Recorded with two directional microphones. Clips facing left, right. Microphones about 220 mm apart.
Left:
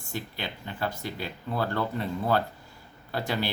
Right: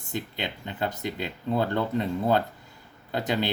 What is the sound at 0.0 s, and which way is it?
Speech, 20° right (ahead or behind).